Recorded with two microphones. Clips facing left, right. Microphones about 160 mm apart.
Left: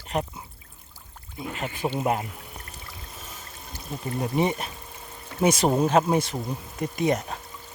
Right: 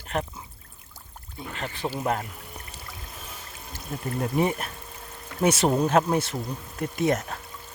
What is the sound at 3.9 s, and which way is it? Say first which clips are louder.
Speech: even; 5° left (ahead or behind).